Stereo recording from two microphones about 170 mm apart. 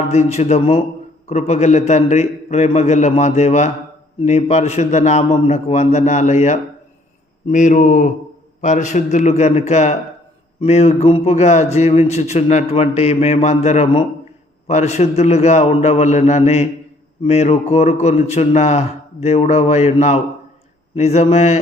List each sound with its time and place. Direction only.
0.1 s a man's voice: 40° left (ahead or behind)